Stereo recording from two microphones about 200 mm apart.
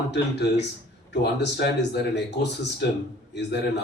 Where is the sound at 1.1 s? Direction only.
55° left (ahead or behind).